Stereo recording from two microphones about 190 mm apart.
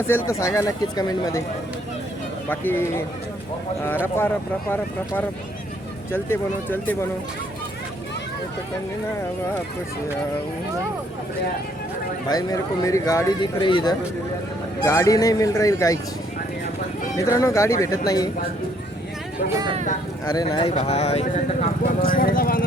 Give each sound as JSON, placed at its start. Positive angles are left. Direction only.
{"t": 0.1, "sound": "speech", "side_deg": 15}
{"t": 2.5, "sound": "speech", "side_deg": 10}
{"t": 6.1, "sound": "speech", "side_deg": 10}
{"t": 12.3, "sound": "speech", "side_deg": 20}
{"t": 17.2, "sound": "speech", "side_deg": 15}
{"t": 20.3, "sound": "speech", "side_deg": 20}
{"t": 22.0, "sound": "speech", "side_deg": 50}